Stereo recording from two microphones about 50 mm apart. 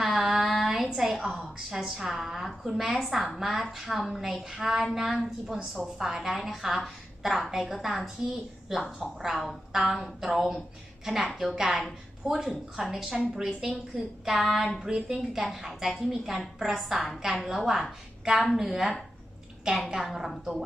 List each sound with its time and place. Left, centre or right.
0.0 s female singing: centre
0.6 s a sound: centre
0.9 s a woman's voice: centre
14.8 s a woman's voice: centre